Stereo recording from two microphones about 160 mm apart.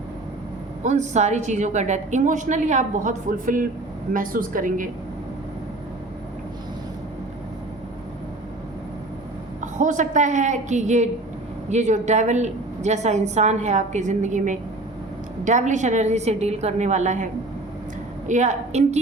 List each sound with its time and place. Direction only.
0.9 s a woman's voice: 45° right (ahead or behind)
9.6 s a woman's voice: 50° right (ahead or behind)
18.3 s a woman's voice: 45° right (ahead or behind)